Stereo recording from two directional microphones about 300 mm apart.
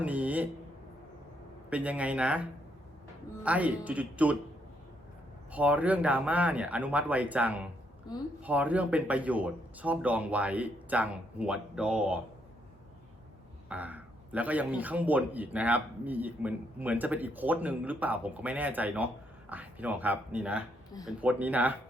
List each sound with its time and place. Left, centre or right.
0.0 s a sound: centre
1.7 s a man's voice: centre
5.5 s a man's voice: centre
13.7 s a man's voice: centre